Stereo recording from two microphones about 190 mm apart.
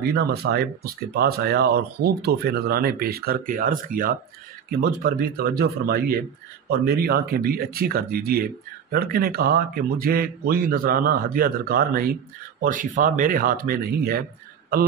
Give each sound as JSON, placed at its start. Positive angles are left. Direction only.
{"t": 0.0, "sound": "speech", "side_deg": -55}